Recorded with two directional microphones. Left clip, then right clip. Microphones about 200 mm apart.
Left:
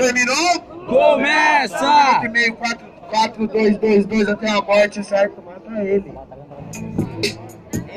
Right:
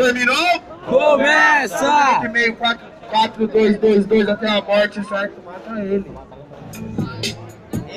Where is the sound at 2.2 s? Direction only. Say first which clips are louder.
Right 1 dB; 45° right (ahead or behind).